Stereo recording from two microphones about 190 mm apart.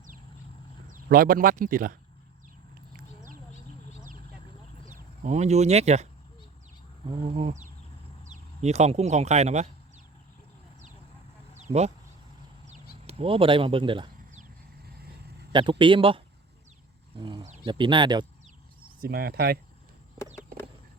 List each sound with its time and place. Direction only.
1.0 s speech: 50° right (ahead or behind)
4.9 s speech: 40° right (ahead or behind)
7.0 s a sound: 30° right (ahead or behind)
8.2 s speech: 40° right (ahead or behind)
11.5 s a sound: 35° right (ahead or behind)
13.1 s speech: 30° right (ahead or behind)
15.8 s speech: 25° right (ahead or behind)
18.9 s speech: 55° right (ahead or behind)